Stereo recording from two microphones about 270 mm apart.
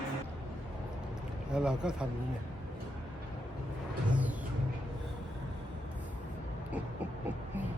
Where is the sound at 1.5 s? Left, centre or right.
Centre.